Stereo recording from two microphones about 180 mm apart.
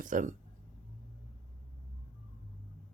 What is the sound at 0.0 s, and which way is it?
Speech, 45° right (ahead or behind).